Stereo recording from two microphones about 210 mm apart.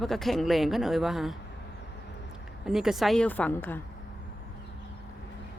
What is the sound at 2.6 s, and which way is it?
Speech, centre (ahead or behind).